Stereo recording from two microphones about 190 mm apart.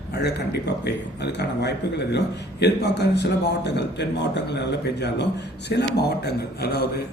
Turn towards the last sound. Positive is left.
turn(degrees=55)  # may be behind; listen again after turning